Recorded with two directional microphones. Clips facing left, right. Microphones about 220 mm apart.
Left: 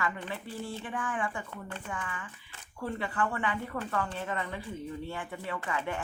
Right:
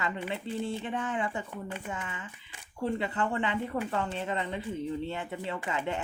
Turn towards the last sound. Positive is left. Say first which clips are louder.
# right 2 dB
turn(degrees=-20)  # may be behind; listen again after turning